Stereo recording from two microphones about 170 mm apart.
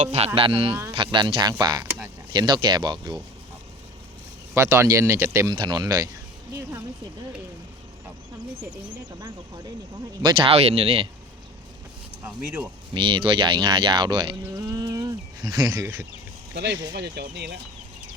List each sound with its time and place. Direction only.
0.0 s speech: 40° right (ahead or behind)
4.5 s speech: 15° right (ahead or behind)
10.2 s speech: 30° right (ahead or behind)
12.9 s speech: 30° right (ahead or behind)
14.5 s livestock: 20° right (ahead or behind)
16.9 s speech: 75° right (ahead or behind)